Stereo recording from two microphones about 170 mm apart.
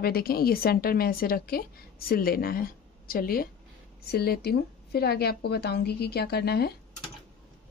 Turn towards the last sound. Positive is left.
turn(degrees=70)  # may be behind; listen again after turning